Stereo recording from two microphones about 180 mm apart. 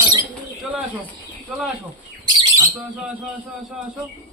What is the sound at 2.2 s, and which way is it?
Bird, 15° right (ahead or behind).